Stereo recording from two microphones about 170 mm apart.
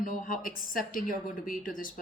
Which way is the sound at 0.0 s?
50° left (ahead or behind).